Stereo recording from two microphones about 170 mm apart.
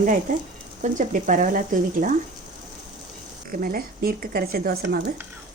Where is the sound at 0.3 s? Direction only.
50° right (ahead or behind).